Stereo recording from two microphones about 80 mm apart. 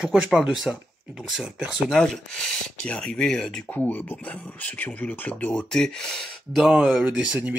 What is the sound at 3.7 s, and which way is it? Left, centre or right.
Speech, left.